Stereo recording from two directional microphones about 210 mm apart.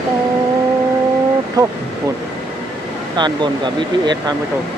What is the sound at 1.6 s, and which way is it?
Speech, 20° right (ahead or behind).